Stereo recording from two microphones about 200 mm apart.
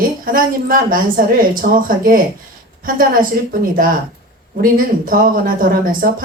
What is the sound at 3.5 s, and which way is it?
Speech, 45° right (ahead or behind).